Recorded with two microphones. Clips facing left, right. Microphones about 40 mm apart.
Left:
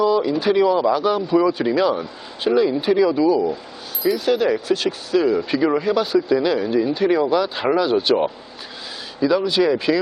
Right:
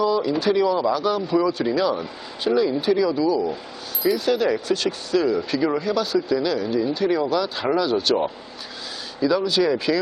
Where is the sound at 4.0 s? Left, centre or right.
Centre.